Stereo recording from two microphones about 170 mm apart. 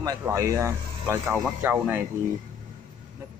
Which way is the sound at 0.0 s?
20° right (ahead or behind).